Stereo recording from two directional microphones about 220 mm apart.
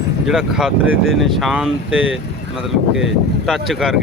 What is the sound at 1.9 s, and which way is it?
Speech, 60° right (ahead or behind).